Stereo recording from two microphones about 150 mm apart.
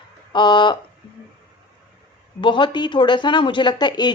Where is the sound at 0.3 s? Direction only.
30° left (ahead or behind).